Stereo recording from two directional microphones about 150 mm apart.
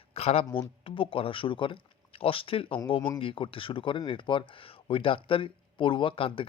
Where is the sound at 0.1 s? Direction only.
40° left (ahead or behind).